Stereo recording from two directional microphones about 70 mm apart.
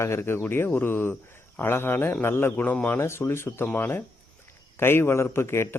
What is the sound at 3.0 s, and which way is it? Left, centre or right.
Speech, left.